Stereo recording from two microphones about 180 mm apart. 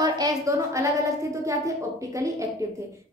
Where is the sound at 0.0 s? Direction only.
20° right (ahead or behind).